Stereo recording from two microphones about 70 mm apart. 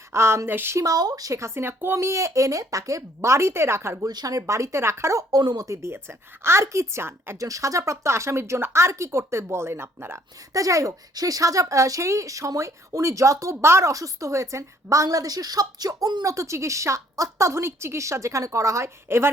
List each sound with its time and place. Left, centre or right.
0.1 s speech: right
0.8 s speech: right
1.3 s speech: right
4.0 s speech: right
5.3 s speech: right
5.6 s speech: right
7.3 s speech: right
10.5 s speech: right